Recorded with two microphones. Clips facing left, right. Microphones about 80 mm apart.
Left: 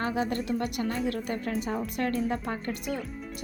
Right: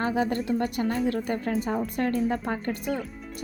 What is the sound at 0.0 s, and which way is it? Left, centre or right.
A woman's voice, right.